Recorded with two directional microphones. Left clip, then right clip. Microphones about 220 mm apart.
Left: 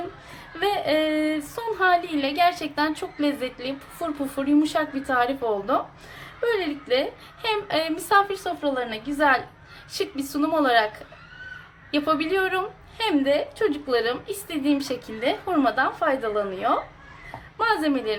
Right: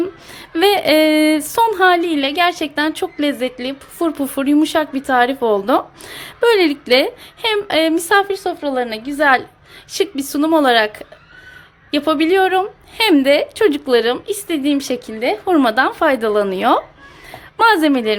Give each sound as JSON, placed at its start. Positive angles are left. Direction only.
{"t": 0.5, "sound": "speech", "side_deg": -45}